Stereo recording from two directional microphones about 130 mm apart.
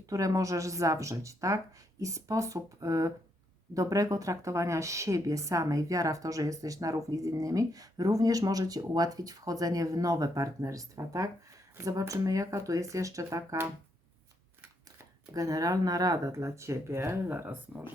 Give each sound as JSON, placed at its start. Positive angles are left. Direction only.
{"t": 0.0, "sound": "speech", "side_deg": -25}
{"t": 15.3, "sound": "speech", "side_deg": -25}